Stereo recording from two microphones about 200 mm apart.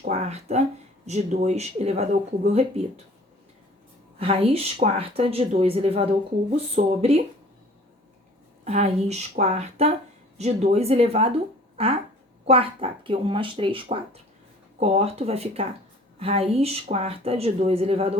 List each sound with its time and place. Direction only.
0.0 s speech: 35° right (ahead or behind)
4.2 s speech: 30° right (ahead or behind)
8.6 s speech: 35° right (ahead or behind)